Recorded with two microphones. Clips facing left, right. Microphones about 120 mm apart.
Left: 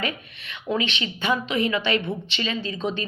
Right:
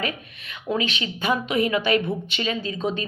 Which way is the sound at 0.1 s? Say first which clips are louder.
Right 1 dB; 35° right (ahead or behind).